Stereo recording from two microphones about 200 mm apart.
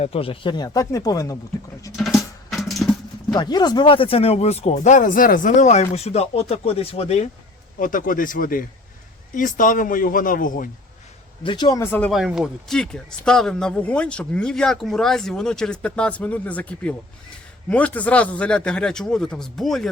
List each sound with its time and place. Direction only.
0.0 s speech: 30° left (ahead or behind)
2.0 s music: centre (ahead or behind)
3.3 s speech: 20° left (ahead or behind)
7.8 s speech: 45° left (ahead or behind)
11.4 s speech: 20° left (ahead or behind); by 19.9 s centre (ahead or behind)